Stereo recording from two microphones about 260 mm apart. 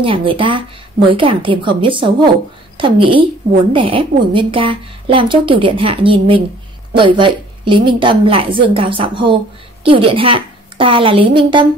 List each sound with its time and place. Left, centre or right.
0.0 s a woman's voice: centre